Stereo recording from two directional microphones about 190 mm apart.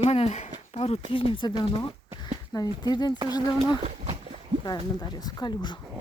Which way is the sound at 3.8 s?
30° right (ahead or behind).